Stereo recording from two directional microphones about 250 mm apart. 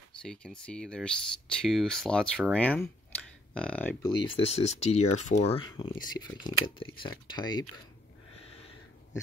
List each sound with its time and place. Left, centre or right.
0.2 s speech: centre
4.0 s speech: left